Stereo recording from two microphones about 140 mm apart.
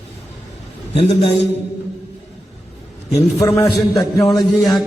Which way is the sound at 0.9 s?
45° left (ahead or behind).